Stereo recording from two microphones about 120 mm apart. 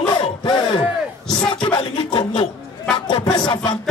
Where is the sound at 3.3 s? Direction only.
40° left (ahead or behind).